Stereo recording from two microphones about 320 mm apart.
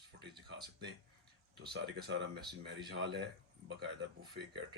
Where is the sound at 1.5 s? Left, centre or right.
Right.